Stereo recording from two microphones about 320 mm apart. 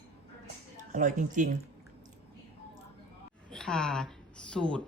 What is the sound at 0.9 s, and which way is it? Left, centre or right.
Speech, right.